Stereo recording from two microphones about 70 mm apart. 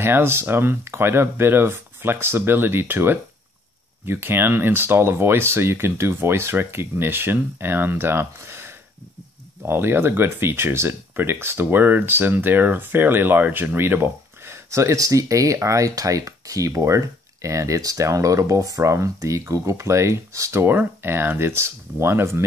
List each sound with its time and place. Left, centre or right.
0.0 s speech: right
20.6 s speech: right